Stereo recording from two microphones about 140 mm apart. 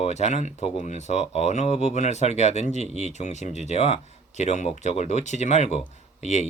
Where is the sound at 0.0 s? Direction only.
55° left (ahead or behind).